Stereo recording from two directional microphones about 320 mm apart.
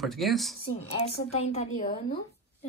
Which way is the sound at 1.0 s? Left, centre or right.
Centre.